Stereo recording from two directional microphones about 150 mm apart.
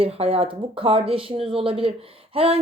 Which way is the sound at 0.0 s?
40° right (ahead or behind).